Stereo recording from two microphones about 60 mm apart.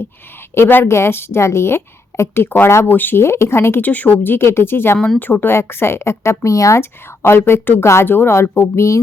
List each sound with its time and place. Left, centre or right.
0.5 s a woman's voice: left
3.8 s a woman's voice: left
6.7 s a woman's voice: left